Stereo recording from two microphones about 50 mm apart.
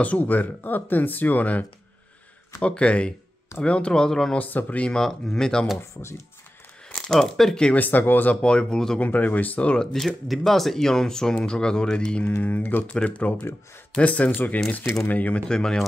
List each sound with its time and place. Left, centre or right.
0.0 s speech: left; by 4.4 s centre
4.4 s speech: left
4.8 s speech: centre
5.8 s speech: left
7.0 s speech: centre
7.7 s speech: left
8.4 s speech: centre
9.0 s speech: left
9.9 s speech: centre
12.3 s speech: left
12.9 s speech: left
15.4 s speech: centre